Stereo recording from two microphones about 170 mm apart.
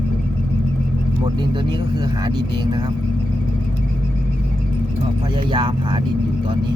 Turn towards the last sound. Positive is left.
turn(degrees=-30)  # may be behind; listen again after turning